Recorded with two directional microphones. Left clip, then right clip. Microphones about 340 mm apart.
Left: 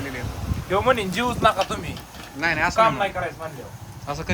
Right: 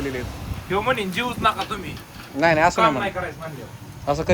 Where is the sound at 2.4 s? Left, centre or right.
Centre.